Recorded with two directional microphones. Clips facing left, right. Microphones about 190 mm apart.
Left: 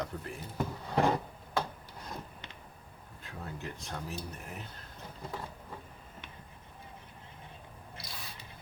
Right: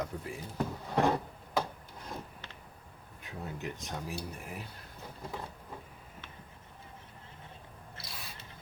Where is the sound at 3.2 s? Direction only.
15° right (ahead or behind).